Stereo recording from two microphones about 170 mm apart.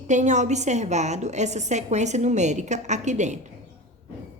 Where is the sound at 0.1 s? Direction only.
45° right (ahead or behind).